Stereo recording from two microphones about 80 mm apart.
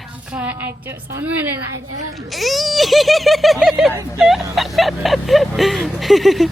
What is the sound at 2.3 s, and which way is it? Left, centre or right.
A woman's voice, centre.